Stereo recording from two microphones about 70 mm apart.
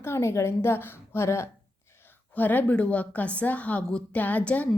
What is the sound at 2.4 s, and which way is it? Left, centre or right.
A woman's voice, left.